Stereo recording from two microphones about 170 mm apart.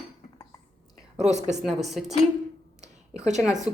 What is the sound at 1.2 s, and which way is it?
Speech, 45° right (ahead or behind).